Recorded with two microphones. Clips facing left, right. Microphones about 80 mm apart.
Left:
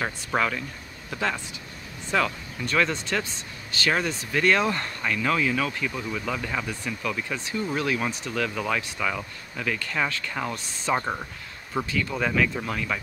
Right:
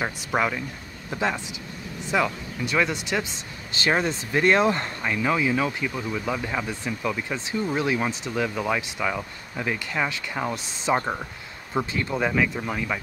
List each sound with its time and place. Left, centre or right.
0.0 s speech: centre
3.7 s speech: right